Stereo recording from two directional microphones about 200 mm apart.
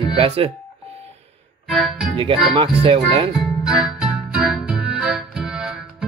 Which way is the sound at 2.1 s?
25° right (ahead or behind).